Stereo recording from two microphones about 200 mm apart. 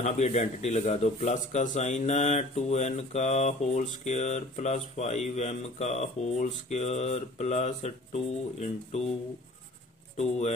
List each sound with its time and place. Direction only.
0.0 s speech: 35° left (ahead or behind)